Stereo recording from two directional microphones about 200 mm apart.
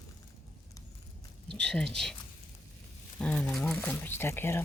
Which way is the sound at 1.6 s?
5° left (ahead or behind).